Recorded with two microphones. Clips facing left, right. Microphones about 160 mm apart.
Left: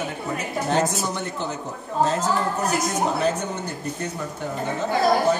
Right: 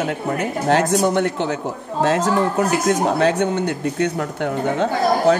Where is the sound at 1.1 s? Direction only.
75° right (ahead or behind).